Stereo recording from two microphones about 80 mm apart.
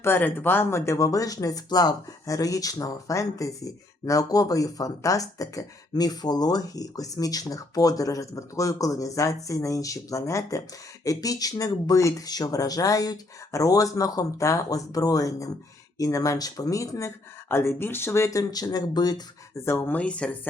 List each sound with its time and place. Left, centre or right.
0.0 s speech: left
17.5 s speech: left
19.6 s speech: left
19.9 s speech: centre